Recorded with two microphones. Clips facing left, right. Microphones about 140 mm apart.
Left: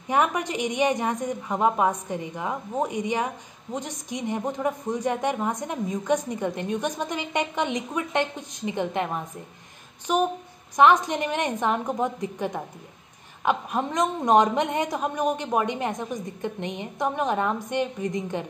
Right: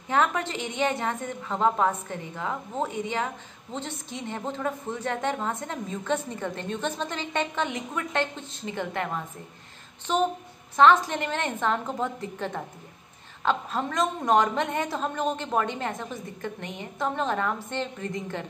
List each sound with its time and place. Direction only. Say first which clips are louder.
0.1 s a woman's voice: left 1 dB; 15° left (ahead or behind)